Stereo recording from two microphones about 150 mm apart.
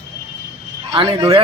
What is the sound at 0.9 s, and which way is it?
Speech, 35° right (ahead or behind).